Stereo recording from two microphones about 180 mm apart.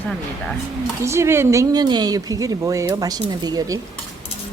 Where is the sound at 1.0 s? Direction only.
15° right (ahead or behind).